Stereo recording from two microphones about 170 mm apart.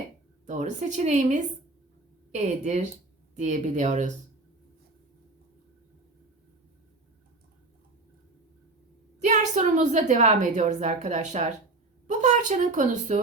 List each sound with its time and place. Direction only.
0.4 s a woman's voice: 45° right (ahead or behind)
9.2 s a woman's voice: 45° right (ahead or behind)